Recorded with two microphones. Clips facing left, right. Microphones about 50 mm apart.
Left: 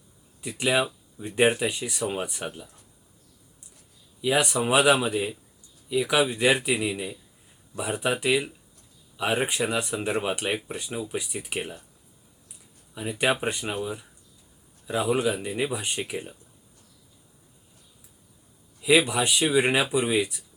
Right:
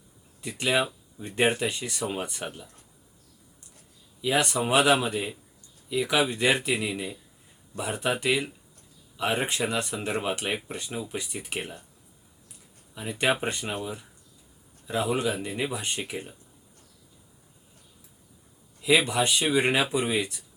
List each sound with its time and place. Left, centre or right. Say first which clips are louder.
0.4 s speech: left 1 dB; centre
4.2 s speech: left 1 dB; centre
12.9 s speech: left 1 dB; centre
14.8 s speech: left 2 dB; centre
18.8 s speech: left 2 dB; centre